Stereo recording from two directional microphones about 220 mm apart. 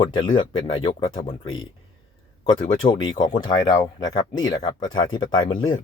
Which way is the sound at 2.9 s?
20° left (ahead or behind).